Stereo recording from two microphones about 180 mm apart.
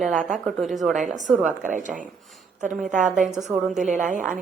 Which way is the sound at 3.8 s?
45° right (ahead or behind).